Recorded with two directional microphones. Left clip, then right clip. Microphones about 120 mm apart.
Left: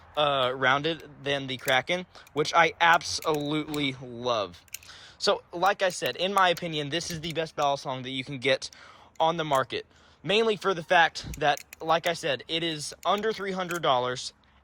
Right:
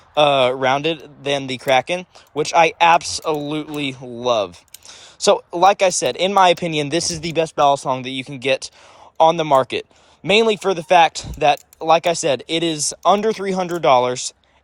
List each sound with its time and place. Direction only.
0.1 s speech: 55° right (ahead or behind)
2.0 s speech: 30° right (ahead or behind)
4.0 s speech: 40° right (ahead or behind)
7.3 s speech: 90° right
7.9 s speech: 40° right (ahead or behind)
9.1 s speech: 50° right (ahead or behind)